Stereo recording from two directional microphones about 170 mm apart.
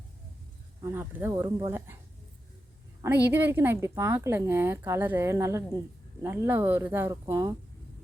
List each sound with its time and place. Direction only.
0.9 s a woman's voice: 15° right (ahead or behind)
3.0 s a woman's voice: 10° right (ahead or behind)